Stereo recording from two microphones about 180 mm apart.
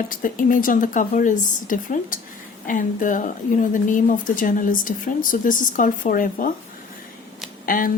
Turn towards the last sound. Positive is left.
turn(degrees=50)  # may be behind; listen again after turning